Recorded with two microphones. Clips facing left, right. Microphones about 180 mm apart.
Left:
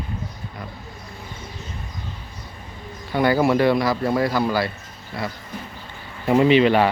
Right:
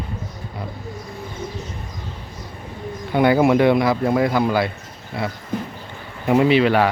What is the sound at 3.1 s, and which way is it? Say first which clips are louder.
Speech: right 3 dB; 20° right (ahead or behind).